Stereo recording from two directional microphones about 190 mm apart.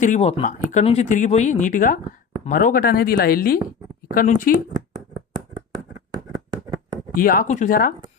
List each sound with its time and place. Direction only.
0.0 s speech: 35° left (ahead or behind)
5.1 s a sound: 20° right (ahead or behind)
7.2 s speech: 50° left (ahead or behind)